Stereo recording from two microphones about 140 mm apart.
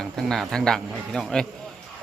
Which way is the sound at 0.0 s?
5° left (ahead or behind).